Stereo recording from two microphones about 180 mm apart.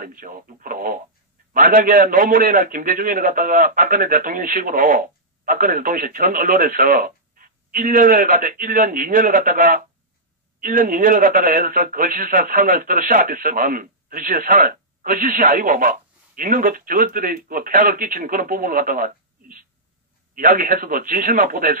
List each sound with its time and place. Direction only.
0.0 s a man's voice: 50° right (ahead or behind)